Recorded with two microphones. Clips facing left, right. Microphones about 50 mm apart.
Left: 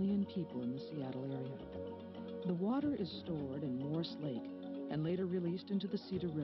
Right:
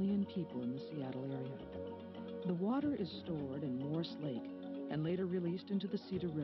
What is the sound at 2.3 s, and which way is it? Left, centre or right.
Speech, right.